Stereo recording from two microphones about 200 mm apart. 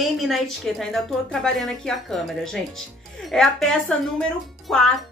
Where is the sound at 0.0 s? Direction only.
Centre (ahead or behind).